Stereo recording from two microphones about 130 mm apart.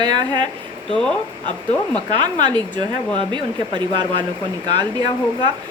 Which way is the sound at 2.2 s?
35° right (ahead or behind).